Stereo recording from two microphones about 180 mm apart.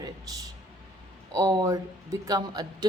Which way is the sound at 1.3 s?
20° right (ahead or behind).